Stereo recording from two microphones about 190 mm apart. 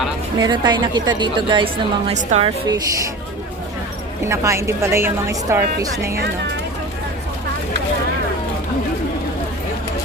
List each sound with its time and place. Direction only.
0.3 s a woman's voice: 20° right (ahead or behind)
2.6 s a woman's voice: 20° right (ahead or behind)
4.3 s a woman's voice: 15° right (ahead or behind)